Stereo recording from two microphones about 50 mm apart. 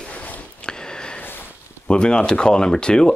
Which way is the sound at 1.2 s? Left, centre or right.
Left.